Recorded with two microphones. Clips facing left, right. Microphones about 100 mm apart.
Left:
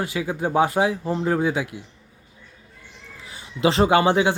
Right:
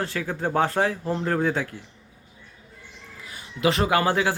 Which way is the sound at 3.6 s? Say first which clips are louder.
Left 4 dB; 25° left (ahead or behind).